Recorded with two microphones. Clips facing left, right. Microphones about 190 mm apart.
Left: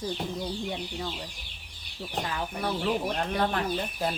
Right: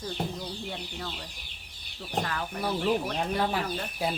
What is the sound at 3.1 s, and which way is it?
Speech, 5° right (ahead or behind).